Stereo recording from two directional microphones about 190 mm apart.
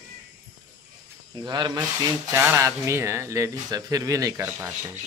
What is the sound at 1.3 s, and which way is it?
Speech, 20° right (ahead or behind).